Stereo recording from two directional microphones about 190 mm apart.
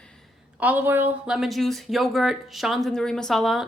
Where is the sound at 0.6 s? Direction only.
10° right (ahead or behind).